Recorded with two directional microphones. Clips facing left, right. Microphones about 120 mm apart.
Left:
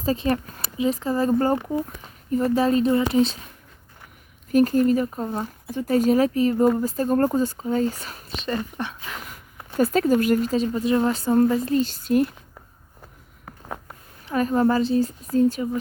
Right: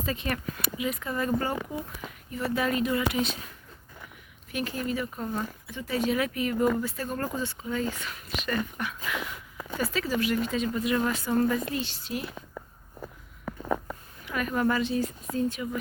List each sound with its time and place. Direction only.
0.0 s speech: 35° left (ahead or behind)
4.5 s speech: 40° left (ahead or behind)
14.3 s speech: 35° left (ahead or behind)